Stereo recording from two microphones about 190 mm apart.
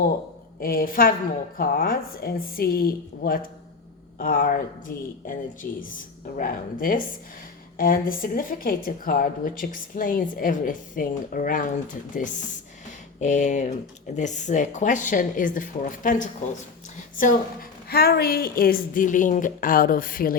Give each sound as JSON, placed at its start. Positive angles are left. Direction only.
{"t": 0.6, "sound": "a woman's voice", "side_deg": 50}
{"t": 6.3, "sound": "a woman's voice", "side_deg": 50}